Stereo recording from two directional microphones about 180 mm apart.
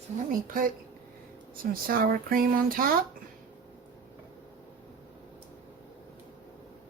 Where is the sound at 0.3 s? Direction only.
50° right (ahead or behind).